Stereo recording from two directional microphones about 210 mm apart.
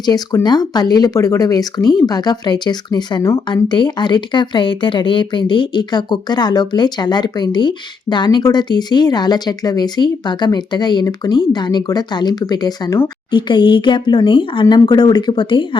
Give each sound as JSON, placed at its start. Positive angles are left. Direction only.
{"t": 0.0, "sound": "speech", "side_deg": 20}